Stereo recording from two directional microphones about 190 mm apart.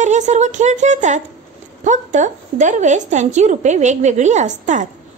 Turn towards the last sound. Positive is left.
turn(degrees=-40)  # may be behind; listen again after turning